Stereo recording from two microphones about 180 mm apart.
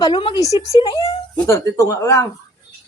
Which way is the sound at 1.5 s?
15° left (ahead or behind).